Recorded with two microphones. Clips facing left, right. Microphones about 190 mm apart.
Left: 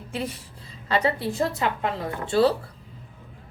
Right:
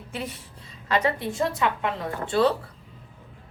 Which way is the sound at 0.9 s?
30° left (ahead or behind).